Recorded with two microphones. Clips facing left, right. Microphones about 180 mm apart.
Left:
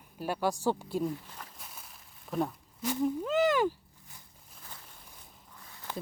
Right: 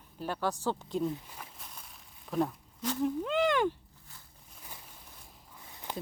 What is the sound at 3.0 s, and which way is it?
Speech, 5° left (ahead or behind).